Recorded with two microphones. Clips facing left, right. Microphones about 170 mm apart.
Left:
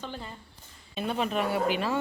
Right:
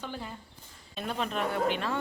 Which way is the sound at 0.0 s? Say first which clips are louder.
Even; 10° right (ahead or behind).